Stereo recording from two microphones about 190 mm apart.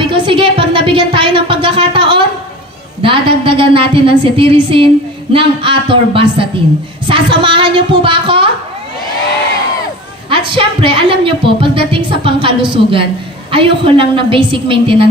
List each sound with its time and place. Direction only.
0.0 s a sound: 25° right (ahead or behind)
3.0 s a woman's voice: 25° right (ahead or behind)
10.3 s a woman's voice: 25° right (ahead or behind)